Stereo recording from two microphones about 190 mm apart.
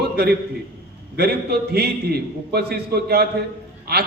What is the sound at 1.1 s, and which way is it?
A man's voice, 55° right (ahead or behind).